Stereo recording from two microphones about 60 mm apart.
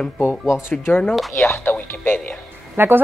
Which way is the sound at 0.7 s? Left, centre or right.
Left.